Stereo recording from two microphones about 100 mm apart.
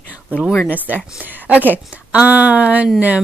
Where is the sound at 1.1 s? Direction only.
15° right (ahead or behind).